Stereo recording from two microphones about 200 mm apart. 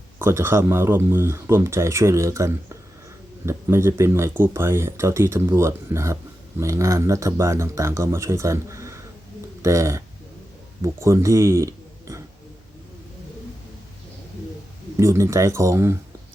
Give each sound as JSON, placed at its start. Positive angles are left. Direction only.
{"t": 0.2, "sound": "speech", "side_deg": -10}
{"t": 14.9, "sound": "speech", "side_deg": -15}